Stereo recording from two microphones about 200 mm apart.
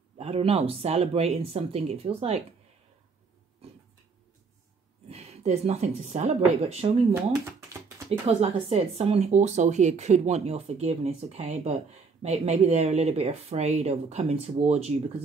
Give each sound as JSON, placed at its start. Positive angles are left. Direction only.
{"t": 0.2, "sound": "speech", "side_deg": -30}
{"t": 5.1, "sound": "speech", "side_deg": -30}
{"t": 8.3, "sound": "speech", "side_deg": -30}